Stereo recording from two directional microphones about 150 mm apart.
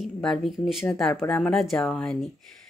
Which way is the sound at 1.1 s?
15° left (ahead or behind).